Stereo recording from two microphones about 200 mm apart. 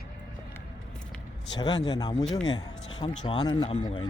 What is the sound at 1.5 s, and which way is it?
Speech, 20° left (ahead or behind).